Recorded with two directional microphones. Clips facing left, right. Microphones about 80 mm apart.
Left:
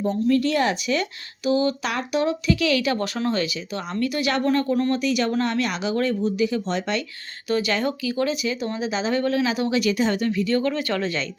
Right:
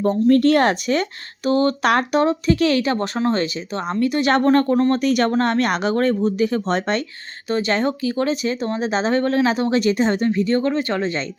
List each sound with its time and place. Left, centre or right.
0.0 s speech: right
2.2 s speech: right
7.4 s speech: right